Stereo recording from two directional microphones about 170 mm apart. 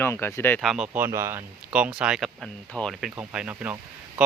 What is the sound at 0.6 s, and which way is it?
Speech, centre (ahead or behind).